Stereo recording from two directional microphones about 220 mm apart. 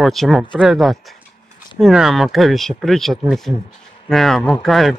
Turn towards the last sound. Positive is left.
turn(degrees=0)  # may be behind; listen again after turning